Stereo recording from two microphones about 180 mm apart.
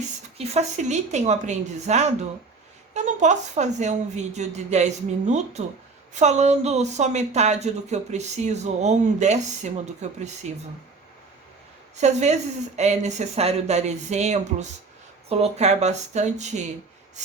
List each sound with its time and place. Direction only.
0.3 s speech: 40° right (ahead or behind)
11.9 s speech: 40° right (ahead or behind)